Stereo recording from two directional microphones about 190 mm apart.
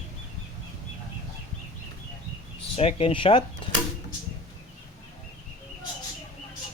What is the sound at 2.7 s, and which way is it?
Speech, 30° left (ahead or behind).